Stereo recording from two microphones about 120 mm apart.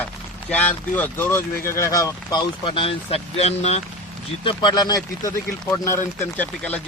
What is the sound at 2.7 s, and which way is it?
Speech, 50° left (ahead or behind).